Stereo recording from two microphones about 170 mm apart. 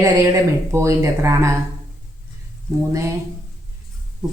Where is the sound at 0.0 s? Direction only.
15° right (ahead or behind).